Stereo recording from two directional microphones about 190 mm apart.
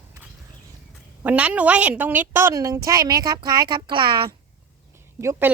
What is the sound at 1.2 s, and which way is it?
A woman's voice, 5° right (ahead or behind).